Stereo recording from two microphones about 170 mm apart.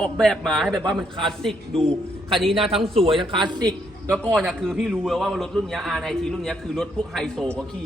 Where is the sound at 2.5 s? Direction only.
35° right (ahead or behind).